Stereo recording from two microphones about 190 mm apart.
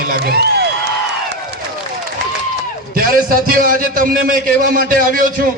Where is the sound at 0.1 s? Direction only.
55° right (ahead or behind).